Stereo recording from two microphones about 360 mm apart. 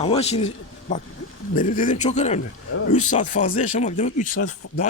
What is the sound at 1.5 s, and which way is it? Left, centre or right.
Speech, left.